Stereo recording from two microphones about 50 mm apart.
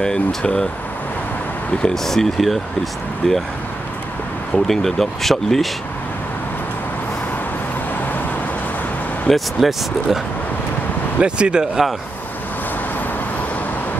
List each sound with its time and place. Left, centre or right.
0.0 s speech: centre
1.8 s speech: centre
4.6 s speech: centre
9.3 s speech: centre
11.1 s speech: right